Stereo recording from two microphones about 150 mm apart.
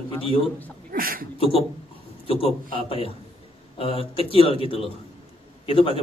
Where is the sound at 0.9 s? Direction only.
75° right (ahead or behind).